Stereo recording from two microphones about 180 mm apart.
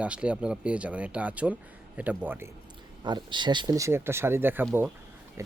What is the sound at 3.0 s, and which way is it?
Speech, 25° right (ahead or behind).